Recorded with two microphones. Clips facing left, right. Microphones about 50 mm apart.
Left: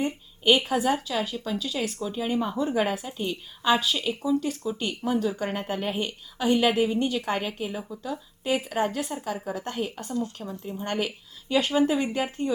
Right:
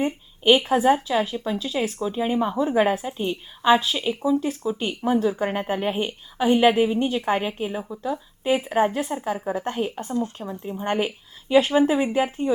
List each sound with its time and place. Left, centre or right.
0.0 s speech: centre